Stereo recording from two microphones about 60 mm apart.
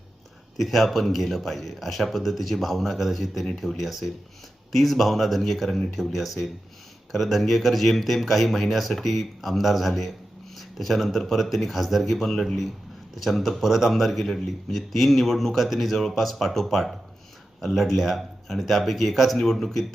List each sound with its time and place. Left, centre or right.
0.5 s a man's voice: centre